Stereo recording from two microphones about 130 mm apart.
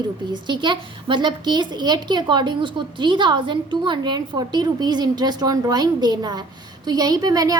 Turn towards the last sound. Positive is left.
turn(degrees=-30)  # may be behind; listen again after turning